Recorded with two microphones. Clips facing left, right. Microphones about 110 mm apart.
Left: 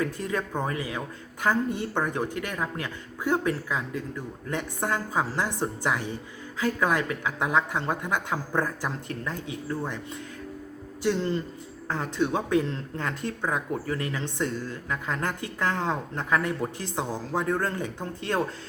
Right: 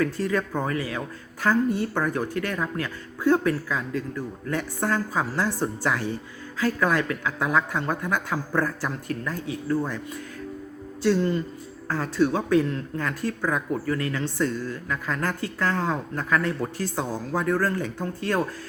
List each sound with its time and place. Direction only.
0.0 s speech: 20° left (ahead or behind)
11.0 s speech: 25° left (ahead or behind)